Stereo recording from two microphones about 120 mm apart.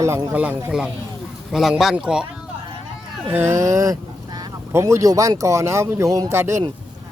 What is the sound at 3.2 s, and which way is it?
Speech, 20° right (ahead or behind).